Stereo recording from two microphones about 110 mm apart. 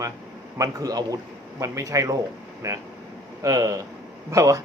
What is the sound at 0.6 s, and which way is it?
A man's voice, 30° right (ahead or behind).